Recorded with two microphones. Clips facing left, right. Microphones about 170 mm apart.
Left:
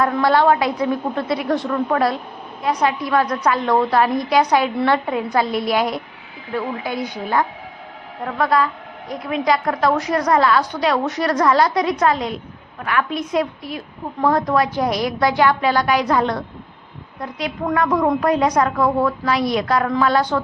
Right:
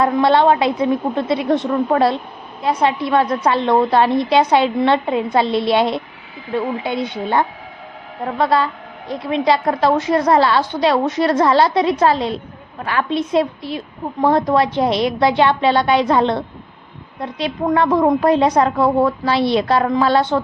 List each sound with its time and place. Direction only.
0.0 s a woman's voice: 25° right (ahead or behind)